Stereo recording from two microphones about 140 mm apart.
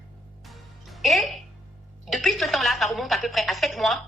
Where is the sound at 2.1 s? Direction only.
Centre (ahead or behind).